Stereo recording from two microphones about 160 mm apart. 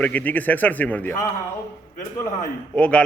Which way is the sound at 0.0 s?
10° left (ahead or behind).